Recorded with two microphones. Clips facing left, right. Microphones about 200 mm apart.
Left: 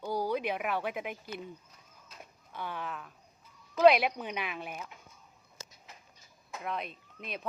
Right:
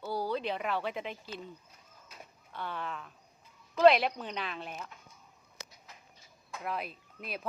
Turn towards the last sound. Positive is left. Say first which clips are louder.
# even
turn(degrees=-5)  # may be behind; listen again after turning